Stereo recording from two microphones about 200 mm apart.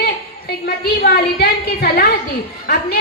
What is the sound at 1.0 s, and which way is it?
A woman's voice, 55° left (ahead or behind).